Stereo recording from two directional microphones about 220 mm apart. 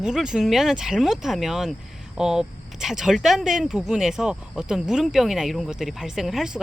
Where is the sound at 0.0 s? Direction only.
5° right (ahead or behind).